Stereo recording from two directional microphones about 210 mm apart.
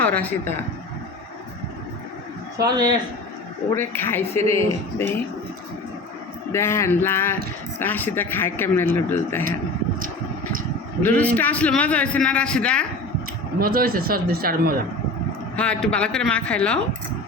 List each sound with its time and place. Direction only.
0.0 s a man's voice: 5° left (ahead or behind)
3.8 s a man's voice: 10° left (ahead or behind)
6.5 s a man's voice: 10° left (ahead or behind)
11.0 s a man's voice: 10° left (ahead or behind)
13.6 s a man's voice: 45° right (ahead or behind)
15.5 s a man's voice: 5° left (ahead or behind)